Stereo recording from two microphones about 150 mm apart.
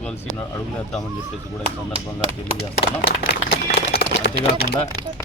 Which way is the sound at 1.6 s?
40° right (ahead or behind).